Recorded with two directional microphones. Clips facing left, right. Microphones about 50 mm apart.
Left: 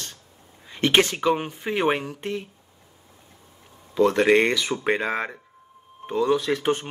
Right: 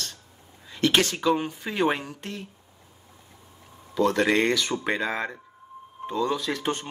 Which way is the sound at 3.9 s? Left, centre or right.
Left.